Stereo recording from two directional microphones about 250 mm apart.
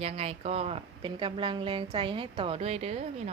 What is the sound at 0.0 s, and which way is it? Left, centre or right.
Speech, right.